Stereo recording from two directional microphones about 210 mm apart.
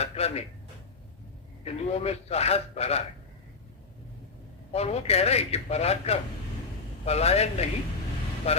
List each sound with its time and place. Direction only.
0.0 s a sound: 30° left (ahead or behind)
1.6 s a man's voice: 30° left (ahead or behind)
4.7 s a man's voice: 30° left (ahead or behind)